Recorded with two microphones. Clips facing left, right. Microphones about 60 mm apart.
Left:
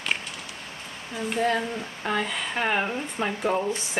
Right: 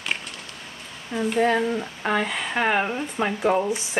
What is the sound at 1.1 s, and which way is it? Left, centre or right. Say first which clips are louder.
Speech: right 6 dB; right.